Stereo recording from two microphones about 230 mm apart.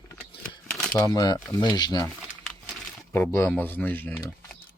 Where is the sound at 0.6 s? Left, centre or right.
Centre.